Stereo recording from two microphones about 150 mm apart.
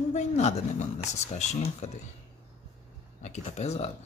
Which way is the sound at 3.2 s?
50° left (ahead or behind).